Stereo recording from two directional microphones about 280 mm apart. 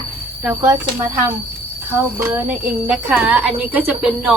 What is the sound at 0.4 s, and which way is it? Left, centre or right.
Speech, centre.